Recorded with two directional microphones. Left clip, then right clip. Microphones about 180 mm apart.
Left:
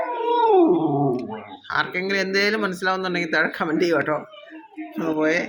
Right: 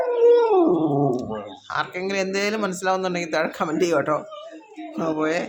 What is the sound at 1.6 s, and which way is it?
Speech, 5° right (ahead or behind).